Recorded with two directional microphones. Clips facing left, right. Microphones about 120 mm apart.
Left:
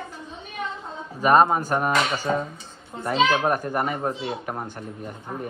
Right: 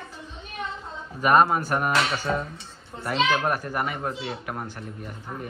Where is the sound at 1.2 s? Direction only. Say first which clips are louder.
Left 2 dB; 35° left (ahead or behind).